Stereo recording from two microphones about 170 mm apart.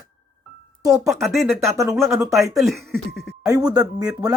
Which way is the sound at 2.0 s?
Centre (ahead or behind).